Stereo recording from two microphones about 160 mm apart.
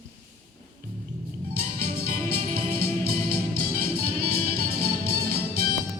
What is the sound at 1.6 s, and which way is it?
Music, 65° right (ahead or behind).